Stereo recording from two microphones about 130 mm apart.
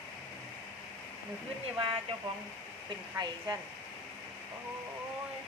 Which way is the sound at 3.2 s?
30° right (ahead or behind).